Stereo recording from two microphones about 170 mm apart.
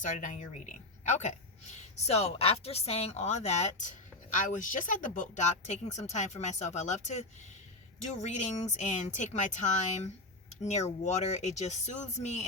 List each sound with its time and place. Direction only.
0.0 s speech: 50° left (ahead or behind)